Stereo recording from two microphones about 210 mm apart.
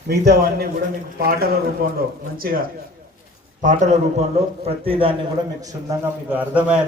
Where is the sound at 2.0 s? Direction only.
45° right (ahead or behind).